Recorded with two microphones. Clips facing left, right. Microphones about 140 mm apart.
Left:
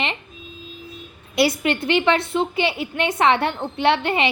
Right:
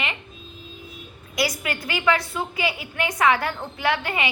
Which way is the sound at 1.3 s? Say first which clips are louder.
Left 7 dB; 30° left (ahead or behind).